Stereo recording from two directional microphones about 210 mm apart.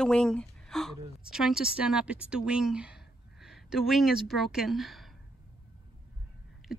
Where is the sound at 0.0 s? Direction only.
5° left (ahead or behind).